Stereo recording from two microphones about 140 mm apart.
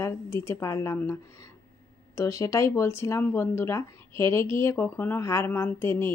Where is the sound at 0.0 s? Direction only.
20° left (ahead or behind).